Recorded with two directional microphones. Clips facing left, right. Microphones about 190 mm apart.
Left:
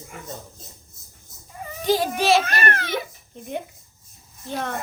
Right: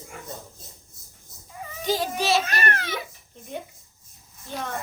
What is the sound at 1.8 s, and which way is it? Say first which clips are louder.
A child's voice: left 5 dB; 55° left (ahead or behind).